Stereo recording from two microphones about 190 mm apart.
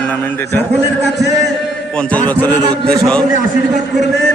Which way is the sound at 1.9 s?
5° left (ahead or behind).